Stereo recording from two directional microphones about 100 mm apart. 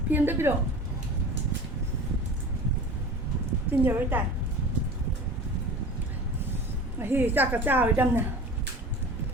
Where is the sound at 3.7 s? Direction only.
20° right (ahead or behind).